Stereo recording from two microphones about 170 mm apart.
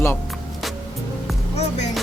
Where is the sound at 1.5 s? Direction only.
40° left (ahead or behind).